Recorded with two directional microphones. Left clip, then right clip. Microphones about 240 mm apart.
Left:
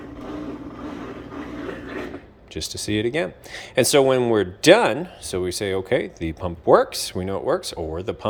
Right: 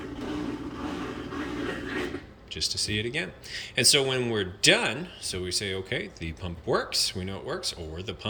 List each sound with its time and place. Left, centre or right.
2.6 s speech: left